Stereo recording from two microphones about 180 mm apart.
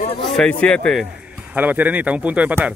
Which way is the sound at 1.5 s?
10° right (ahead or behind).